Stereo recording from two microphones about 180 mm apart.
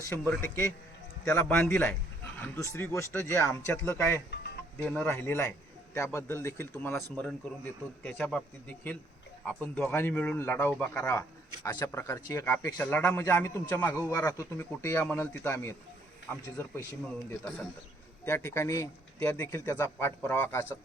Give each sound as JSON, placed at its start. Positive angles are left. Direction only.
{"t": 0.1, "sound": "speech", "side_deg": 15}